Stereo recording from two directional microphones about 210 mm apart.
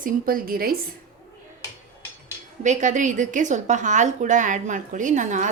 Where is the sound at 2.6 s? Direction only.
35° right (ahead or behind).